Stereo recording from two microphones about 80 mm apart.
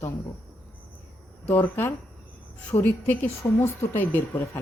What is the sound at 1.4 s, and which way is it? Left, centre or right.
Speech, left.